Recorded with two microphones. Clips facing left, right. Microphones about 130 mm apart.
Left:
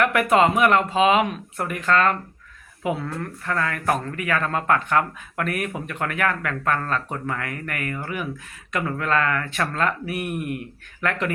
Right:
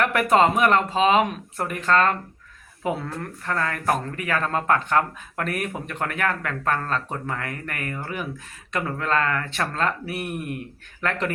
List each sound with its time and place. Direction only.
0.0 s speech: 35° right (ahead or behind)